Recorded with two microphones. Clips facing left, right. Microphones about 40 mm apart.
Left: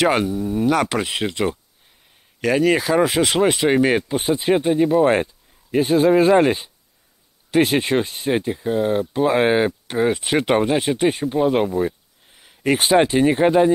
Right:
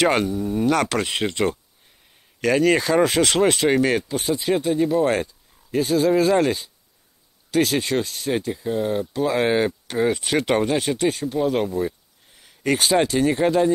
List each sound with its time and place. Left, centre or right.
0.0 s speech: centre; by 13.7 s left